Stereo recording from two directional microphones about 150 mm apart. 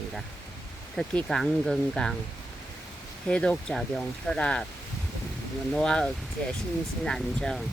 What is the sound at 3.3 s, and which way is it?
Speech, 5° left (ahead or behind).